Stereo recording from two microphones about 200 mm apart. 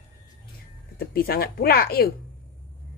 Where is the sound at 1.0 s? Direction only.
50° left (ahead or behind).